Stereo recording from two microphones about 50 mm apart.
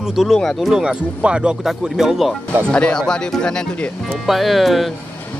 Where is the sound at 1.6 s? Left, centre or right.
Centre.